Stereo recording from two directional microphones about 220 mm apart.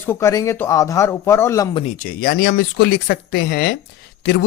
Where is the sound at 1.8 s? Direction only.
40° left (ahead or behind).